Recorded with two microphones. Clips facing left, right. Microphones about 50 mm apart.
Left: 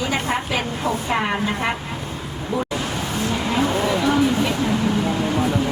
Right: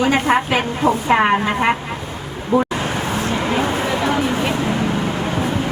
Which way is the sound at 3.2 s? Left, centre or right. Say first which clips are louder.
Even; right.